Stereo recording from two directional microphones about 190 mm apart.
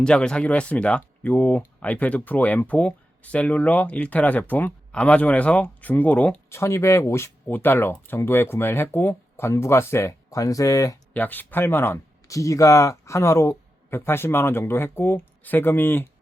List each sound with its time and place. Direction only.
0.0 s speech: 5° left (ahead or behind)